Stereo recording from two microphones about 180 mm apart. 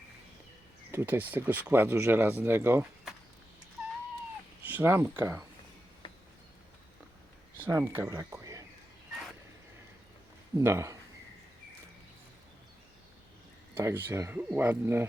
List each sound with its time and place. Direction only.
0.9 s speech: 10° right (ahead or behind)
4.6 s speech: 10° right (ahead or behind)
7.5 s speech: 10° right (ahead or behind)
10.5 s speech: 15° right (ahead or behind)
13.7 s speech: 15° right (ahead or behind)